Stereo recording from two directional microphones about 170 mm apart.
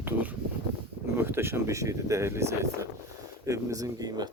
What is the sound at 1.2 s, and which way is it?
Speech, 15° right (ahead or behind).